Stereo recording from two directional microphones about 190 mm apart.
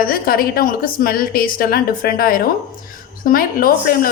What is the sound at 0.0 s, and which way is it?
A woman's voice, 50° left (ahead or behind).